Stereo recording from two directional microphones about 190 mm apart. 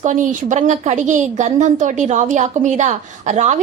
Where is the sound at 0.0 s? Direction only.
40° right (ahead or behind).